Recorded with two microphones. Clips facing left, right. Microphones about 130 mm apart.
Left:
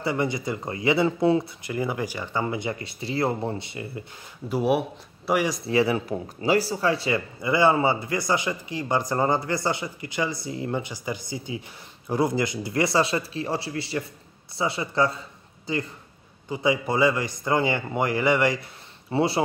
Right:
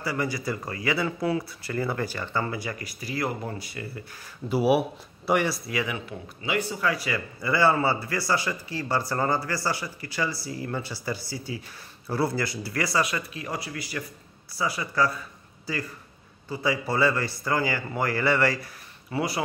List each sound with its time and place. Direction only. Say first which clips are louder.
0.0 s speech: left 3 dB; 25° left (ahead or behind)
4.5 s speech: right 1 dB; 5° right (ahead or behind)
5.7 s speech: left 8 dB; 30° left (ahead or behind)